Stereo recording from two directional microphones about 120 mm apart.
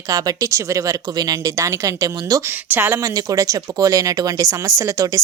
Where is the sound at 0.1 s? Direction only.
30° right (ahead or behind).